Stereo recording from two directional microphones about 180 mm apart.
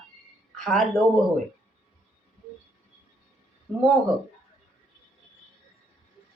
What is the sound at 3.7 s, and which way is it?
Speech, 10° left (ahead or behind).